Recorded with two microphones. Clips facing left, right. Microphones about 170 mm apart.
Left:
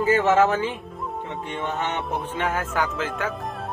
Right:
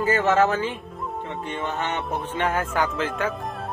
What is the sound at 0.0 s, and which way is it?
Speech, 15° left (ahead or behind).